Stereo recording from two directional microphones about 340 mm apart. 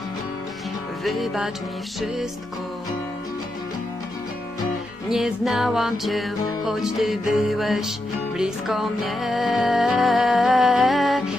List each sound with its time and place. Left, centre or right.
1.0 s music: centre
5.0 s music: centre